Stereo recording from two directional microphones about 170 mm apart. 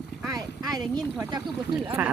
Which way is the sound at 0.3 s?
20° right (ahead or behind).